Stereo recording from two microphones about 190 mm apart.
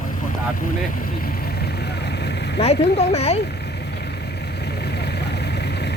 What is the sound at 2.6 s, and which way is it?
Speech, 35° left (ahead or behind).